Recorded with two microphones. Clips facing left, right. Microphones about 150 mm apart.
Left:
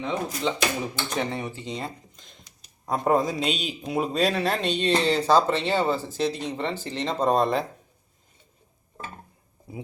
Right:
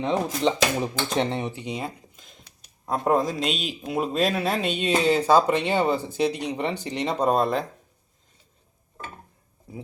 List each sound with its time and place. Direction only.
0.0 s a man's voice: 35° right (ahead or behind); by 7.6 s 5° right (ahead or behind)